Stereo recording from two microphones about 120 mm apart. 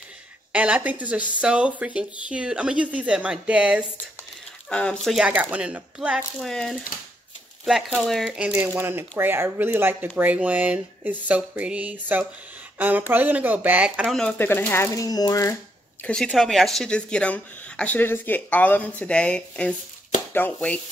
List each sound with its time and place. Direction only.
0.5 s speech: 10° right (ahead or behind)
4.6 s speech: 10° left (ahead or behind)
5.3 s speech: 15° right (ahead or behind)
6.4 s speech: 5° left (ahead or behind)
14.4 s speech: 20° left (ahead or behind)
15.0 s speech: 30° left (ahead or behind)
16.1 s speech: 5° left (ahead or behind)